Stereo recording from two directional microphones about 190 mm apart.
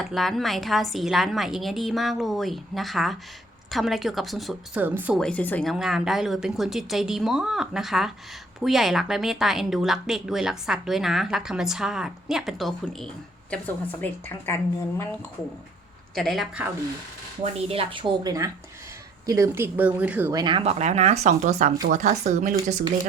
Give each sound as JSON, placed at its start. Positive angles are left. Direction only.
{"t": 0.0, "sound": "a woman's voice", "side_deg": 0}
{"t": 5.2, "sound": "a woman's voice", "side_deg": 10}
{"t": 16.1, "sound": "a woman's voice", "side_deg": 0}
{"t": 17.4, "sound": "speech", "side_deg": -30}
{"t": 20.4, "sound": "speech", "side_deg": -30}